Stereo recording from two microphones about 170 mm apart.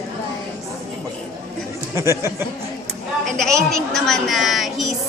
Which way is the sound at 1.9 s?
15° right (ahead or behind).